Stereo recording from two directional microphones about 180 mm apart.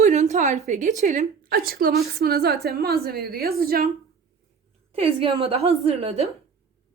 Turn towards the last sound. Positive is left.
turn(degrees=-35)  # may be behind; listen again after turning